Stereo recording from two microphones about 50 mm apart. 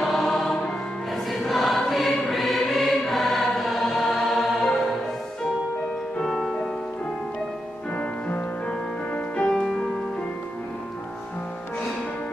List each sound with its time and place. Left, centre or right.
0.0 s choir: centre
6.2 s music: centre
7.9 s music: left